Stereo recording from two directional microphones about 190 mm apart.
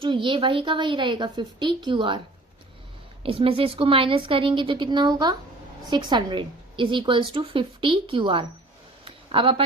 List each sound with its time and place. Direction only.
0.0 s a woman's voice: 25° right (ahead or behind)
3.2 s a woman's voice: 30° right (ahead or behind)
9.0 s a sound: 25° right (ahead or behind)